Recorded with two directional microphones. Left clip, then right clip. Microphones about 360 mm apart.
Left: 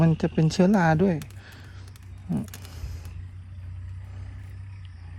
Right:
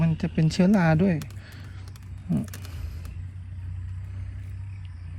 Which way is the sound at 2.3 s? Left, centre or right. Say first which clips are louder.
Right 2 dB; centre.